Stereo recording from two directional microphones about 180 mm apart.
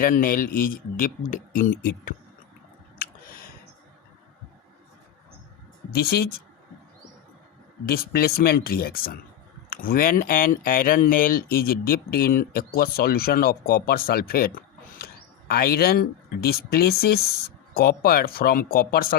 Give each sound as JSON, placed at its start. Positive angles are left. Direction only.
{"t": 0.0, "sound": "speech", "side_deg": 50}
{"t": 3.0, "sound": "a sound", "side_deg": 55}
{"t": 5.9, "sound": "speech", "side_deg": 60}
{"t": 7.9, "sound": "speech", "side_deg": 55}